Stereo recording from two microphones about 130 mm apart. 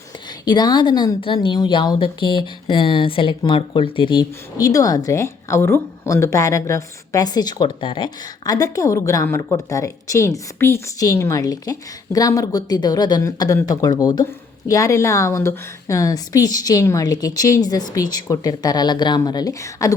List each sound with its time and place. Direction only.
0.4 s a woman's voice: 30° left (ahead or behind)